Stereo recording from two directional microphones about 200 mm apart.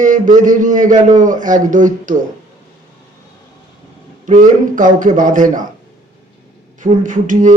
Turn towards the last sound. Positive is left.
turn(degrees=-40)  # may be behind; listen again after turning